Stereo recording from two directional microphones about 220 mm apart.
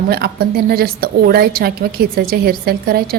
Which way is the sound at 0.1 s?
45° right (ahead or behind).